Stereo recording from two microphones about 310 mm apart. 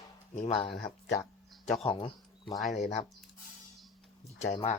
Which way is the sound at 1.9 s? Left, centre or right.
Centre.